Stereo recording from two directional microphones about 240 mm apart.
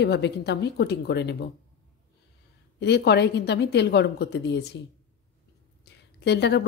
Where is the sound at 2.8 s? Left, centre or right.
Left.